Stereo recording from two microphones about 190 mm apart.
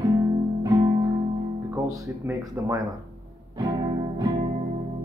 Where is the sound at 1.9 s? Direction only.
15° right (ahead or behind).